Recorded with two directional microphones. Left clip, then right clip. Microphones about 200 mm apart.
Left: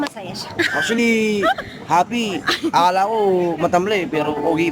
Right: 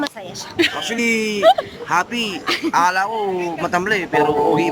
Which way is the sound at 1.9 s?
15° left (ahead or behind).